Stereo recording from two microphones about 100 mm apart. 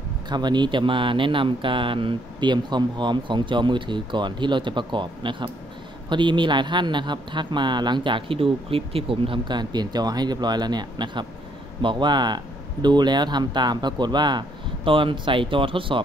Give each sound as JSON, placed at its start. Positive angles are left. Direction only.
{"t": 0.3, "sound": "speech", "side_deg": -45}
{"t": 14.9, "sound": "speech", "side_deg": -60}